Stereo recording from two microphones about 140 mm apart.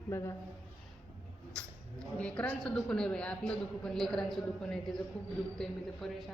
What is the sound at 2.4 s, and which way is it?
A man's voice, 5° left (ahead or behind).